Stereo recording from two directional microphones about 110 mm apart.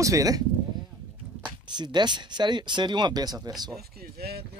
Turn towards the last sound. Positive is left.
turn(degrees=-35)  # may be behind; listen again after turning